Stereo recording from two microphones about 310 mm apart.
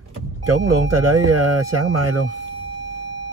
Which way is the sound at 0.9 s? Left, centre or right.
Right.